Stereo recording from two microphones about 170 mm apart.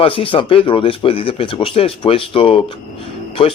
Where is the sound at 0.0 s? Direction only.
30° left (ahead or behind).